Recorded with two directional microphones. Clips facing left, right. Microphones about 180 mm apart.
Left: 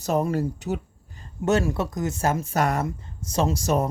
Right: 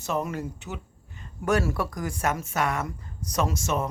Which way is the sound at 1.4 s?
20° left (ahead or behind).